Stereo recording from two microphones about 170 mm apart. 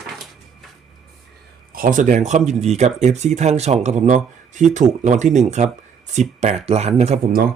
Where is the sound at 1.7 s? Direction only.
55° right (ahead or behind).